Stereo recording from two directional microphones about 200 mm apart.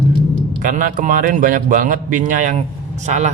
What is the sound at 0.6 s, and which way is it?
A man's voice, 40° right (ahead or behind).